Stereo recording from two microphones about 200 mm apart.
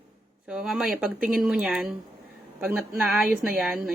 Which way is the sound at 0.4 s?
5° right (ahead or behind).